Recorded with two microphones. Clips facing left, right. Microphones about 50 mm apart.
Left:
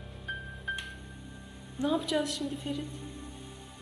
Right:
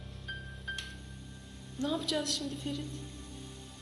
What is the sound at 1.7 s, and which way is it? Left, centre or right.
A woman's voice, centre.